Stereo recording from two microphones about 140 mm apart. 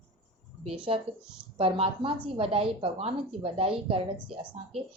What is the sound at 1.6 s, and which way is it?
A woman's voice, 40° right (ahead or behind).